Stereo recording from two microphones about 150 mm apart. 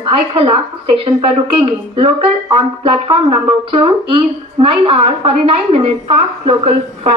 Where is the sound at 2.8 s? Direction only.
35° right (ahead or behind).